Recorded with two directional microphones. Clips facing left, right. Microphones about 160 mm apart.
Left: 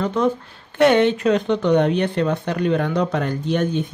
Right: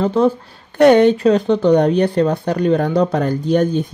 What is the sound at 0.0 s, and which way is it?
Speech, 35° right (ahead or behind).